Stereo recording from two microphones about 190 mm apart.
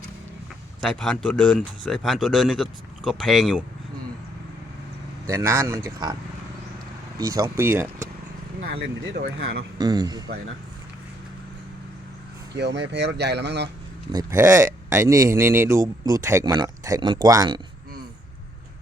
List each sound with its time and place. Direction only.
0.9 s speech: 5° left (ahead or behind)
5.2 s speech: 15° right (ahead or behind)
7.2 s speech: 20° right (ahead or behind)
8.6 s speech: 55° right (ahead or behind); by 9.6 s 70° right (ahead or behind)
9.7 s a man's voice: 20° right (ahead or behind)
12.5 s speech: 65° right (ahead or behind)
14.1 s a man's voice: 15° right (ahead or behind)